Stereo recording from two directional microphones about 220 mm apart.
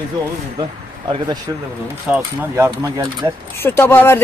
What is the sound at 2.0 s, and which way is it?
Speech, 10° right (ahead or behind).